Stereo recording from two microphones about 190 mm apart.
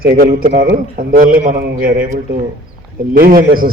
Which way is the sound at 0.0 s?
50° right (ahead or behind).